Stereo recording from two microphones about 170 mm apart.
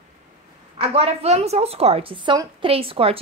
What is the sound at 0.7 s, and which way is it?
A woman's voice, 35° right (ahead or behind).